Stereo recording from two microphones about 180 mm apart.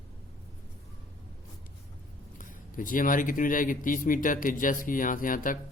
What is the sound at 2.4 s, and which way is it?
A man's voice, 50° left (ahead or behind).